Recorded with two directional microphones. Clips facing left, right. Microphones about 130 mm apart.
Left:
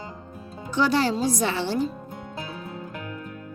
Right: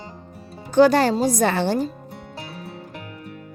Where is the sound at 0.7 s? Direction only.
45° right (ahead or behind).